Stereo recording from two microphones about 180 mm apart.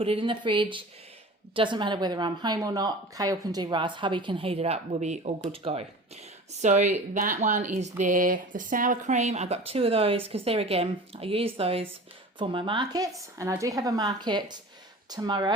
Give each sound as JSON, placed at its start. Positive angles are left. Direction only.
{"t": 0.0, "sound": "a woman's voice", "side_deg": -30}